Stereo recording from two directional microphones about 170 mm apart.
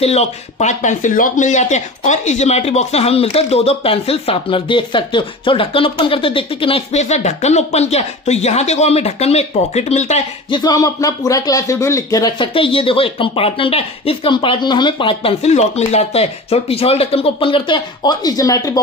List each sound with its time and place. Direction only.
0.0 s speech: 40° left (ahead or behind)
10.5 s speech: 25° left (ahead or behind)